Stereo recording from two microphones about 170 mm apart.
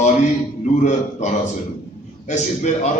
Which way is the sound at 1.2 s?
45° left (ahead or behind).